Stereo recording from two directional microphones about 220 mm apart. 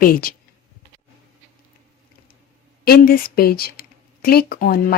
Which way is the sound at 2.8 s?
45° left (ahead or behind).